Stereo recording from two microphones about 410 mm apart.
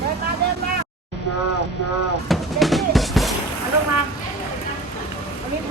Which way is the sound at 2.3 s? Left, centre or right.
Centre.